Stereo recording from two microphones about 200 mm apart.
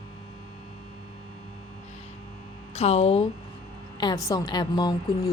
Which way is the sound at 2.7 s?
30° left (ahead or behind).